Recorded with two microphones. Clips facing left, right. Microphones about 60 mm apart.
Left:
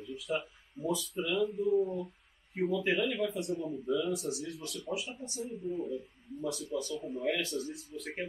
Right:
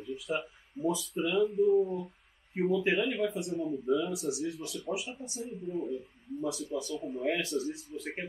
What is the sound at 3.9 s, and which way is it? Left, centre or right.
Speech, right.